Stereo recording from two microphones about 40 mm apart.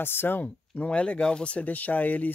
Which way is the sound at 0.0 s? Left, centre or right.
Left.